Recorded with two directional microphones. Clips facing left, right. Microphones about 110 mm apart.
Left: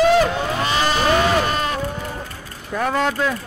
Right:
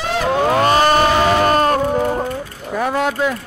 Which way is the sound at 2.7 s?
10° right (ahead or behind).